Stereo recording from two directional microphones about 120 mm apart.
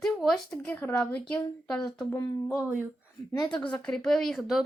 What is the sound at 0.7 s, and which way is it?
Speech, 15° left (ahead or behind).